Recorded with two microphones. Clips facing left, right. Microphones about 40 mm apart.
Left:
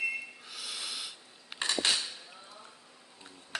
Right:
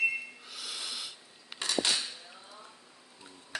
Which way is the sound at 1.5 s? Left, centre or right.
Left.